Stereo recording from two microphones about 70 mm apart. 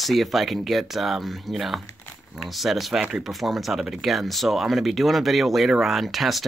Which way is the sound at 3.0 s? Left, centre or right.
Centre.